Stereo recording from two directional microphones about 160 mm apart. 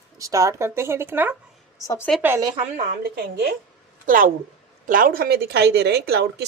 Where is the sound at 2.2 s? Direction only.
15° right (ahead or behind).